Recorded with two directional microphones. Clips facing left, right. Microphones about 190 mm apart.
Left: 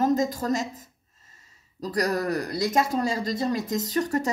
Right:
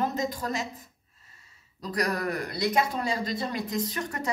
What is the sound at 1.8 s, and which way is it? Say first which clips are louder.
Speech: left 3 dB; 40° left (ahead or behind).